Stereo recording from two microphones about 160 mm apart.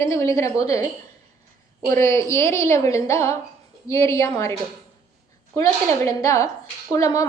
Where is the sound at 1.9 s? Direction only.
20° left (ahead or behind).